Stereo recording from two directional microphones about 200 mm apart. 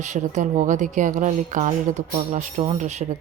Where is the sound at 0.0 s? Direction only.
35° right (ahead or behind).